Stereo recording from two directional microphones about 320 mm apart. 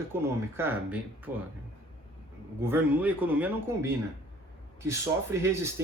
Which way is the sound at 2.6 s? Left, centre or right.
Centre.